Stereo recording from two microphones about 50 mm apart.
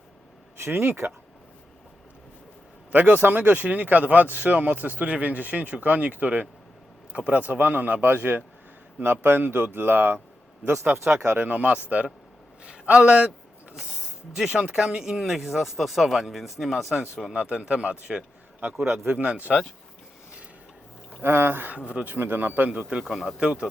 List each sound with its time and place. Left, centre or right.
0.5 s speech: right
2.9 s speech: right
11.5 s speech: right
13.7 s speech: centre
17.3 s speech: right
18.6 s speech: right
19.1 s speech: right
21.2 s speech: right
21.7 s speech: right
22.0 s speech: right
22.9 s speech: centre